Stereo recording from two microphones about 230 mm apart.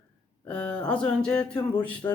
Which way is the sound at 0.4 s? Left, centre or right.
Centre.